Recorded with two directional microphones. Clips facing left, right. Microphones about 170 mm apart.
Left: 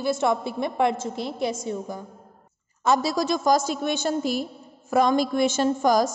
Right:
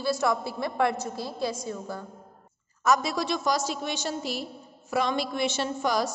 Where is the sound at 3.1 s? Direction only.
45° left (ahead or behind).